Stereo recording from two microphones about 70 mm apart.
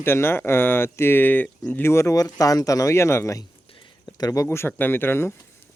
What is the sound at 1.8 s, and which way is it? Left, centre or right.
Speech, left.